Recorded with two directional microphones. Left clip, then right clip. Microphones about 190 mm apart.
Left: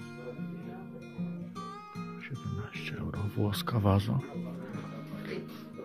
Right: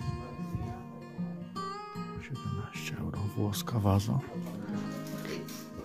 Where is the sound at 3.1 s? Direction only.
15° right (ahead or behind).